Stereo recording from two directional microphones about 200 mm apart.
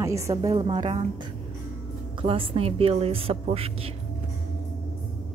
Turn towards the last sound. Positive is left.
turn(degrees=-30)  # may be behind; listen again after turning